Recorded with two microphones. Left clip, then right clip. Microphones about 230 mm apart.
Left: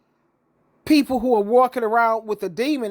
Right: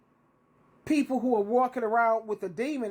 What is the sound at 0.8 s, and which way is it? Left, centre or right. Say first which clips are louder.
A woman's voice: left 9 dB; left.